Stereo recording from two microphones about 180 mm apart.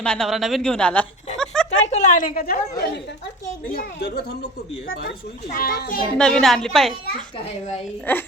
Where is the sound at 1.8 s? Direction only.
40° left (ahead or behind); by 6.0 s 55° left (ahead or behind).